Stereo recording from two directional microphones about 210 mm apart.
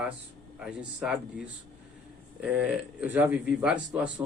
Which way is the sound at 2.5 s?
5° right (ahead or behind).